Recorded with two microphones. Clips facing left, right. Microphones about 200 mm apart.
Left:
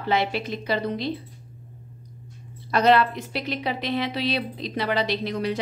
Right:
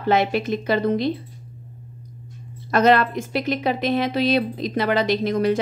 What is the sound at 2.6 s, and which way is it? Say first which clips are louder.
A woman's voice: right 2 dB; 50° right (ahead or behind).